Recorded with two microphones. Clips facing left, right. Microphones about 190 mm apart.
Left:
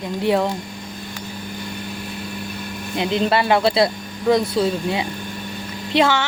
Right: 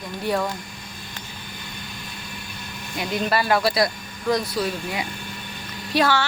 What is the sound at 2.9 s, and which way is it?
A child's voice, 25° left (ahead or behind).